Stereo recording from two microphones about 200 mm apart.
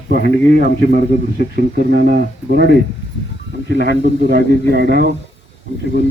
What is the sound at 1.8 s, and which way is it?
Speech, 55° right (ahead or behind).